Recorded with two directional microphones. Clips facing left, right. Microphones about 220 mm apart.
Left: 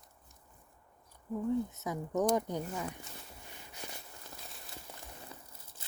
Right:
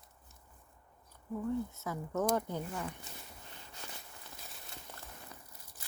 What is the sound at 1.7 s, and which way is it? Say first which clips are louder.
Speech: left 3 dB; 20° left (ahead or behind).